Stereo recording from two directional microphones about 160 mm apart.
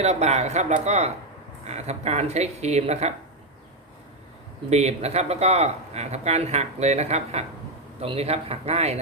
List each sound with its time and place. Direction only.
0.0 s speech: 45° right (ahead or behind)
4.7 s speech: 45° right (ahead or behind)